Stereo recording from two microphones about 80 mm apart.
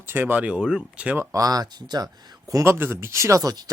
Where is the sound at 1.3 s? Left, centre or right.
Right.